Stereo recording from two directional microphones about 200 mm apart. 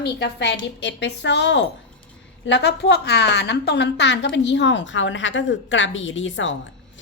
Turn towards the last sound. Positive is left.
turn(degrees=70)  # may be behind; listen again after turning